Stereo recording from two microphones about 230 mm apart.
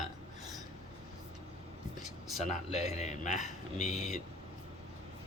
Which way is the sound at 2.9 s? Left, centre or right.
Left.